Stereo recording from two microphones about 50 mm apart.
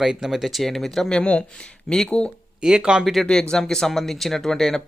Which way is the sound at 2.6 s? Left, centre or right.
Centre.